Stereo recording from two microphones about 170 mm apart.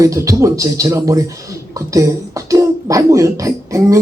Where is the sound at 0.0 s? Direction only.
20° right (ahead or behind).